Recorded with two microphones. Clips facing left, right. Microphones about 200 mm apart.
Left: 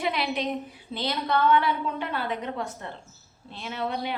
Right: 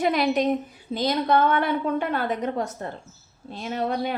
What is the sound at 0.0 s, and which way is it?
Speech, 45° right (ahead or behind).